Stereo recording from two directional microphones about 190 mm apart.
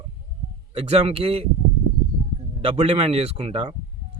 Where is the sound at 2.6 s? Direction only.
30° right (ahead or behind).